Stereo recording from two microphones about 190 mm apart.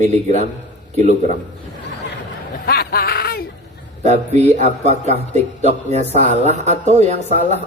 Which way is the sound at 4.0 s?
35° right (ahead or behind).